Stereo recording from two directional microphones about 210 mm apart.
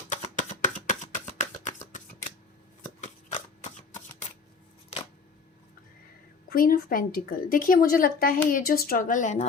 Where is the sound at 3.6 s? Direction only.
35° left (ahead or behind).